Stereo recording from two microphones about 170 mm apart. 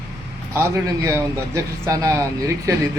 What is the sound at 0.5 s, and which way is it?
A man's voice, 15° right (ahead or behind).